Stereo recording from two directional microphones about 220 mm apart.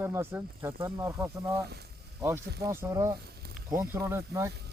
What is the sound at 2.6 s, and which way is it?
Speech, 15° right (ahead or behind).